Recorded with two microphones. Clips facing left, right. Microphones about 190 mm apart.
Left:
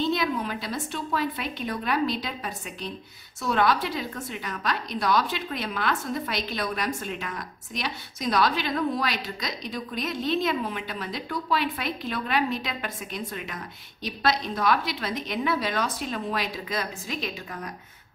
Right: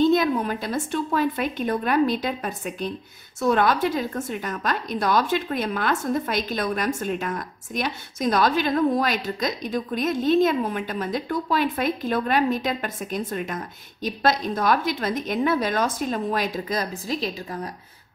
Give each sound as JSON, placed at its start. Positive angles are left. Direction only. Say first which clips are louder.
{"t": 0.0, "sound": "a woman's voice", "louder": "right 7 dB", "side_deg": -45}